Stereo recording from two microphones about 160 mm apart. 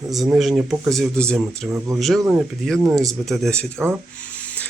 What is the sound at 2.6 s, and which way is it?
Speech, 5° left (ahead or behind).